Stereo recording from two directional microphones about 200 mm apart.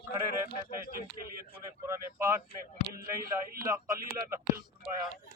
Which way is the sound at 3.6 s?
15° right (ahead or behind).